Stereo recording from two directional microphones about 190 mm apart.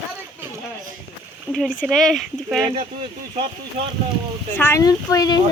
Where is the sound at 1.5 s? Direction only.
10° right (ahead or behind).